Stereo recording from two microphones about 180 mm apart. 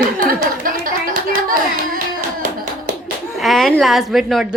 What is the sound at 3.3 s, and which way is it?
A woman's voice, centre (ahead or behind).